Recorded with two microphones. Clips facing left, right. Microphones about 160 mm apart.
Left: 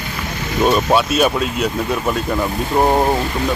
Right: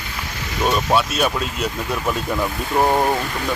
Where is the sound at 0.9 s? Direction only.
15° left (ahead or behind).